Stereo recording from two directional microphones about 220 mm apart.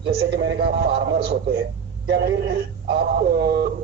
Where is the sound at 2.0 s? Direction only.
50° right (ahead or behind).